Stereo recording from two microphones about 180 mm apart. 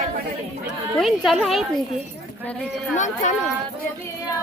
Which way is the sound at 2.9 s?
40° left (ahead or behind).